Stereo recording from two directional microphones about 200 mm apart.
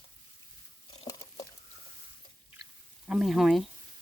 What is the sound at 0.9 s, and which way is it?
Patter, 20° left (ahead or behind).